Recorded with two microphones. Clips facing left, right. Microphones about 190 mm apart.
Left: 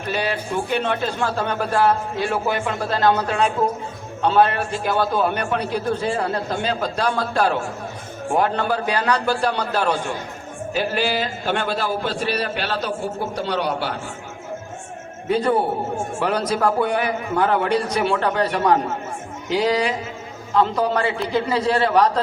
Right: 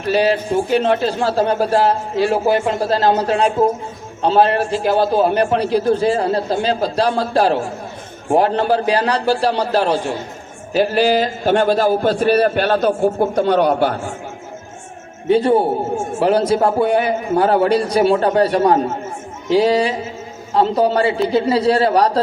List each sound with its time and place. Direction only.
0.1 s a man's voice: 35° right (ahead or behind)
15.3 s a woman's voice: 25° right (ahead or behind)